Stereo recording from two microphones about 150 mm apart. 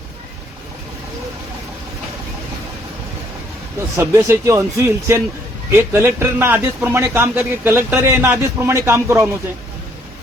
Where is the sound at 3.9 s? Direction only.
20° right (ahead or behind).